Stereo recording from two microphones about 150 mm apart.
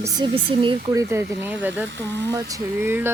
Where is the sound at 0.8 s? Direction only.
20° right (ahead or behind).